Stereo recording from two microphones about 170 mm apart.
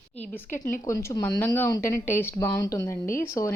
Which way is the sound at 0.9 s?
15° left (ahead or behind).